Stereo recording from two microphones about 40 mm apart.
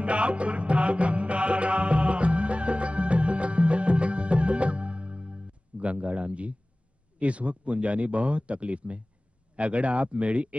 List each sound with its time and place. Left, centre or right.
0.0 s music: right
7.2 s a man's voice: right